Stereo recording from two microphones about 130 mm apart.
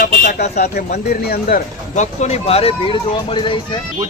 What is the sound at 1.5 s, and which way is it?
Speech, 65° left (ahead or behind).